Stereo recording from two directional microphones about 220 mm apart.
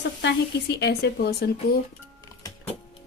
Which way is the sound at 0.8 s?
50° left (ahead or behind).